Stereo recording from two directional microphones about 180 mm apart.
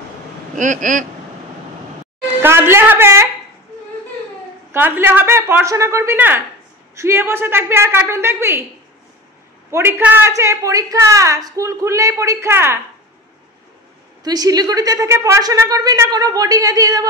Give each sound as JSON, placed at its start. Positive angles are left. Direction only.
{"t": 0.6, "sound": "speech", "side_deg": -45}
{"t": 2.4, "sound": "speech", "side_deg": -15}
{"t": 4.7, "sound": "speech", "side_deg": -10}
{"t": 9.7, "sound": "speech", "side_deg": -15}
{"t": 14.2, "sound": "a woman's voice", "side_deg": -20}